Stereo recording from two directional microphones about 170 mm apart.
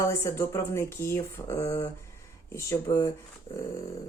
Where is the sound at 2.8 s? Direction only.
25° left (ahead or behind).